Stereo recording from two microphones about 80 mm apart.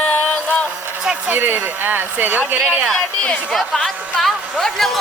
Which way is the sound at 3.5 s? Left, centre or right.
Centre.